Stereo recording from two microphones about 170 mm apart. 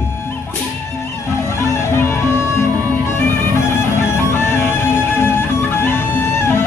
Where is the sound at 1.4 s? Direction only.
15° left (ahead or behind).